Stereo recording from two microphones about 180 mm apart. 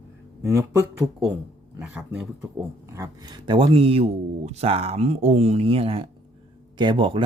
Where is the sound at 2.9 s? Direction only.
20° right (ahead or behind).